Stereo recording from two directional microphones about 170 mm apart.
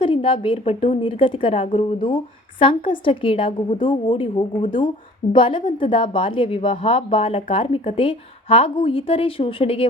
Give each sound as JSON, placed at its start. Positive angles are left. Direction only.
{"t": 0.0, "sound": "a woman's voice", "side_deg": 30}